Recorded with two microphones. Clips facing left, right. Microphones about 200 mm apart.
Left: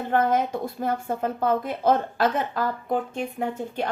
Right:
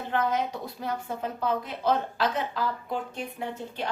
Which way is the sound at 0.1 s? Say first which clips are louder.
Left 5 dB; 50° left (ahead or behind).